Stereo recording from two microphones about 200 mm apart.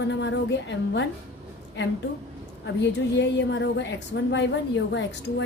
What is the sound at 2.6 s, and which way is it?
A woman's voice, 60° left (ahead or behind).